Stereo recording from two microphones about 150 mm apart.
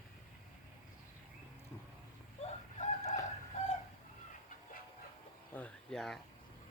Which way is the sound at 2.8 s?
50° left (ahead or behind).